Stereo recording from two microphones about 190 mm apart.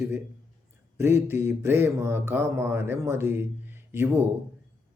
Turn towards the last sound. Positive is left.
turn(degrees=-10)  # may be behind; listen again after turning